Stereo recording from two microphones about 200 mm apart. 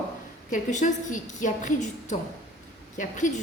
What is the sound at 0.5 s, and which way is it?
A woman's voice, 40° left (ahead or behind).